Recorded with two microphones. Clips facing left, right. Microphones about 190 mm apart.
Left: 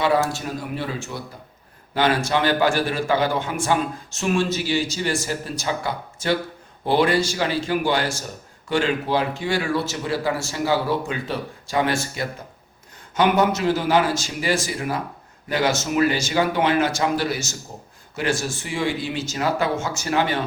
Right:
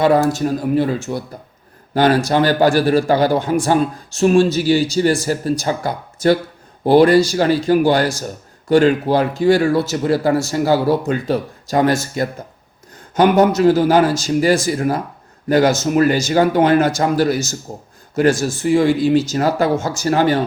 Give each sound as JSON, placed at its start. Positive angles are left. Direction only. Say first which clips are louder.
{"t": 0.0, "sound": "a man's voice", "louder": "right 7 dB", "side_deg": -40}